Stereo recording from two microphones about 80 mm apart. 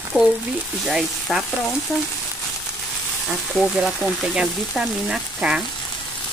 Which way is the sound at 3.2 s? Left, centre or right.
Centre.